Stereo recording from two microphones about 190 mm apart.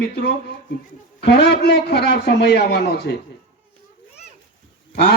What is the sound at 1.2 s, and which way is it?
A man's voice, 60° left (ahead or behind).